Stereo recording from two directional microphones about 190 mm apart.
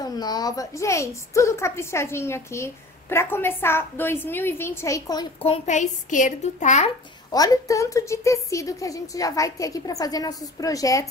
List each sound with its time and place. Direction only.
0.0 s a woman's voice: 20° left (ahead or behind)
5.4 s a child's voice: 35° left (ahead or behind)
7.2 s a woman's voice: 20° left (ahead or behind)